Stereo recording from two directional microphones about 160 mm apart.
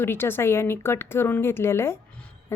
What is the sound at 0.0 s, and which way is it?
A woman's voice, 15° left (ahead or behind).